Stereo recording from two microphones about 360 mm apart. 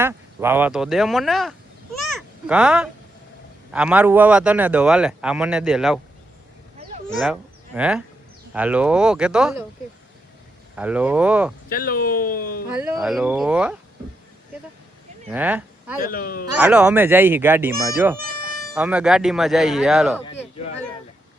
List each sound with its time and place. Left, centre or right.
0.0 s a man's voice: centre
7.8 s a man's voice: centre
10.8 s a man's voice: centre
11.7 s speech: left
12.8 s a man's voice: centre
15.3 s speech: centre
16.0 s speech: left
16.6 s a man's voice: centre
18.2 s cat: right
18.7 s a man's voice: centre
20.2 s a man's voice: centre